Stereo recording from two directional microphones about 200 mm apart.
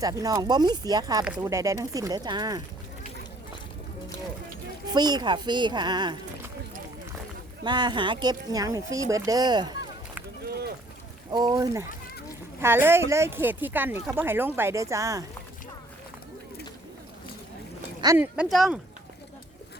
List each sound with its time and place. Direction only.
0.0 s speech: 15° right (ahead or behind)
4.9 s speech: 20° right (ahead or behind)
7.6 s speech: 20° right (ahead or behind)
11.3 s speech: 20° right (ahead or behind)
18.0 s speech: 10° right (ahead or behind)